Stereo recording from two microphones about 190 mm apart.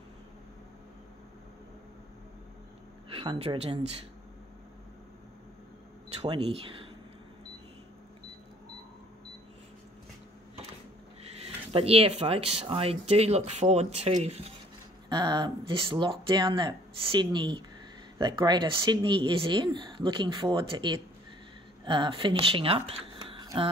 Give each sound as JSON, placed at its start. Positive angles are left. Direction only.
{"t": 3.1, "sound": "speech", "side_deg": -30}
{"t": 6.2, "sound": "speech", "side_deg": -30}
{"t": 11.3, "sound": "speech", "side_deg": -30}
{"t": 15.0, "sound": "speech", "side_deg": -20}